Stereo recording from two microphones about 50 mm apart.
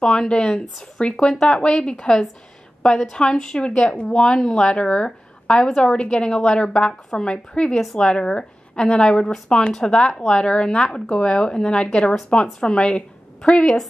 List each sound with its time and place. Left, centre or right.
0.0 s a woman's voice: centre